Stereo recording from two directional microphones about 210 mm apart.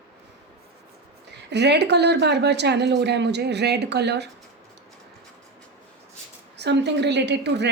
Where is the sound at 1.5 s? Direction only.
55° right (ahead or behind).